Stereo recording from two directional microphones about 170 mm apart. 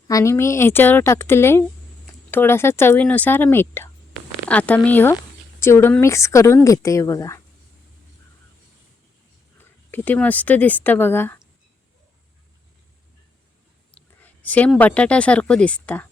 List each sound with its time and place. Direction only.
0.1 s speech: 20° left (ahead or behind)
9.6 s speech: 10° left (ahead or behind)
13.9 s speech: 10° left (ahead or behind)